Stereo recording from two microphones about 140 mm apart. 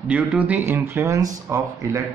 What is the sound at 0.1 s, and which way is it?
A man's voice, 10° right (ahead or behind).